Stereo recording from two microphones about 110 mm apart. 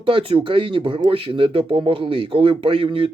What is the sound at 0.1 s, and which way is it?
Speech, 55° right (ahead or behind).